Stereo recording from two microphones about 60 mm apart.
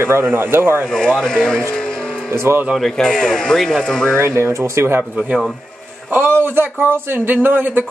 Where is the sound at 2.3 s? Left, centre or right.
Right.